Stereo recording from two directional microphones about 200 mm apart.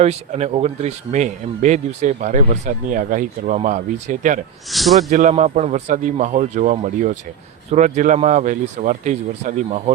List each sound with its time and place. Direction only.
0.0 s speech: 35° right (ahead or behind)
4.7 s speech: centre (ahead or behind)
5.0 s speech: 35° right (ahead or behind)